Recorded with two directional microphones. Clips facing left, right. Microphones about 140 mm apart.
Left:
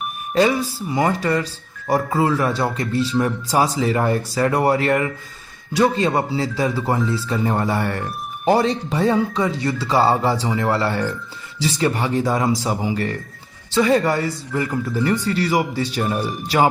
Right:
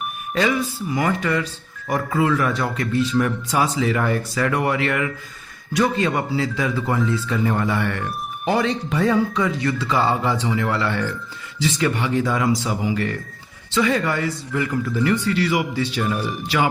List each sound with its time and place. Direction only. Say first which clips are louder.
0.3 s speech: left 3 dB; 30° left (ahead or behind)